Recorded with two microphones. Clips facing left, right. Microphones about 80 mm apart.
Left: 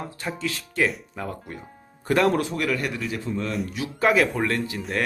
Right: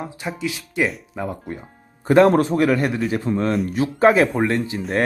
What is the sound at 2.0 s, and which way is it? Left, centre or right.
Speech, right.